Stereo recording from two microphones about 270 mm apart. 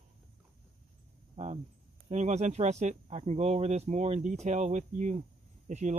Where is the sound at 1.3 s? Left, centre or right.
Right.